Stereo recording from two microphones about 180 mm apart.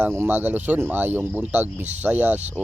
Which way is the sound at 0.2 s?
10° right (ahead or behind).